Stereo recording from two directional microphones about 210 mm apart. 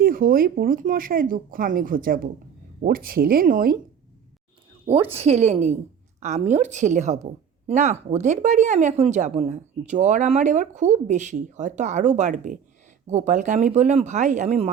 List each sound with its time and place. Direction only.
0.0 s speech: 45° right (ahead or behind)
5.1 s a woman's voice: 30° right (ahead or behind)